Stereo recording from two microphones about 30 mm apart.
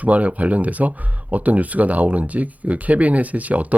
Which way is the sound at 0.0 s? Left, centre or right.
Right.